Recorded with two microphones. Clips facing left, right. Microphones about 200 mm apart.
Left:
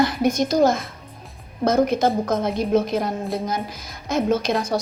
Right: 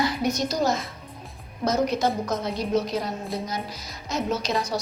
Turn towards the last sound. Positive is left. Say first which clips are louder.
# left 5 dB
turn(degrees=50)  # may be behind; listen again after turning